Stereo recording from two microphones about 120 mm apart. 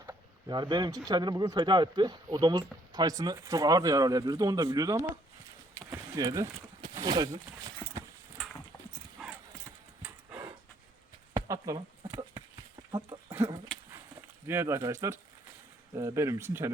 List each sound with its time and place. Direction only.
0.0 s a sound: 30° right (ahead or behind)
1.0 s speech: 35° right (ahead or behind)
9.2 s clip-clop: centre (ahead or behind)
11.3 s a sound: 25° right (ahead or behind)
12.9 s goat: 35° right (ahead or behind)
14.2 s speech: 20° right (ahead or behind)